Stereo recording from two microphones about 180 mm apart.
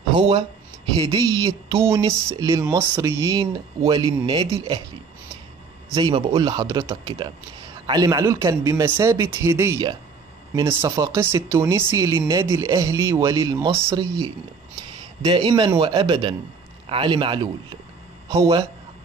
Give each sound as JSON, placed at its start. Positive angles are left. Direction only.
{"t": 0.1, "sound": "speech", "side_deg": -25}
{"t": 5.9, "sound": "speech", "side_deg": -25}
{"t": 15.2, "sound": "speech", "side_deg": -25}